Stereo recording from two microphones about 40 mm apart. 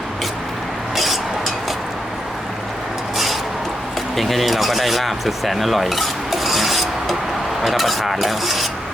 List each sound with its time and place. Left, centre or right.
0.9 s a sound: centre
4.2 s speech: centre
7.6 s filing: centre